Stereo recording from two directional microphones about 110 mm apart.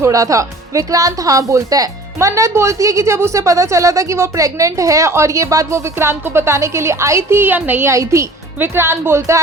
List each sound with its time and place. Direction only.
0.0 s speech: 30° right (ahead or behind)